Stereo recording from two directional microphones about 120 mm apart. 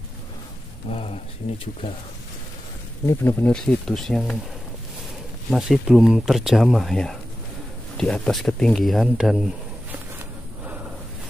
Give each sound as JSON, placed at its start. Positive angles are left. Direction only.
{"t": 0.9, "sound": "speech", "side_deg": 55}
{"t": 3.1, "sound": "speech", "side_deg": 20}
{"t": 3.5, "sound": "speech", "side_deg": 5}
{"t": 5.5, "sound": "speech", "side_deg": -5}